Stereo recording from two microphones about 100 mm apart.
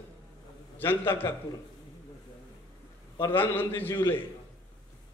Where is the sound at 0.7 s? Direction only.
20° left (ahead or behind).